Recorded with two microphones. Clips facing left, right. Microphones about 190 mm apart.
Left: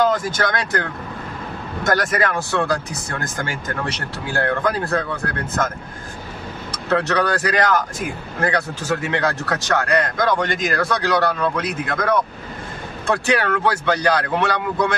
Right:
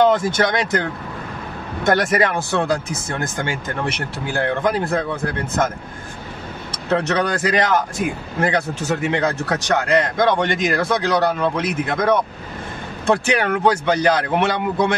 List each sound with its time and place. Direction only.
0.0 s speech: 25° right (ahead or behind)
1.9 s speech: 25° right (ahead or behind)
6.9 s speech: 20° right (ahead or behind)